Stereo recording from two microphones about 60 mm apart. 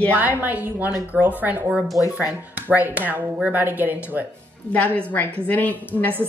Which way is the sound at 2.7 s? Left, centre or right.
Right.